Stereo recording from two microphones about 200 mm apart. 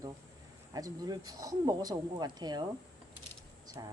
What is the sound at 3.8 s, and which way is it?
Speech, 15° right (ahead or behind).